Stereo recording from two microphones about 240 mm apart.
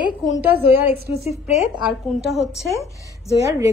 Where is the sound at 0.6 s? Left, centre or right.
Centre.